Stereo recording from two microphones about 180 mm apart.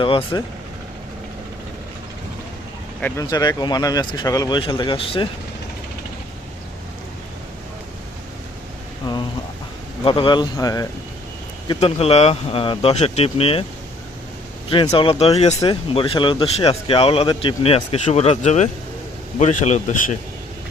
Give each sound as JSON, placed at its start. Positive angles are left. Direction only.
{"t": 0.0, "sound": "speech", "side_deg": 30}
{"t": 3.0, "sound": "speech", "side_deg": 20}
{"t": 9.1, "sound": "a sound", "side_deg": 25}
{"t": 10.0, "sound": "speech", "side_deg": 30}
{"t": 11.7, "sound": "speech", "side_deg": 35}
{"t": 14.7, "sound": "speech", "side_deg": 30}